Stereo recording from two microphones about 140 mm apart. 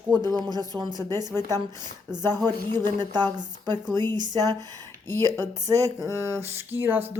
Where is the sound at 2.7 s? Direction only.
30° right (ahead or behind); by 7.0 s 15° right (ahead or behind).